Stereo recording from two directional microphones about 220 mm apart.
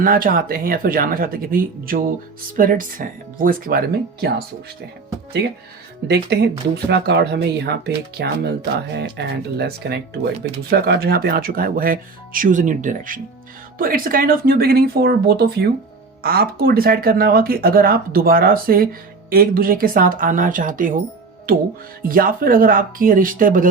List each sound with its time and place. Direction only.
0.0 s speech: 40° right (ahead or behind)
6.1 s speech: 50° right (ahead or behind)
22.0 s speech: 40° right (ahead or behind)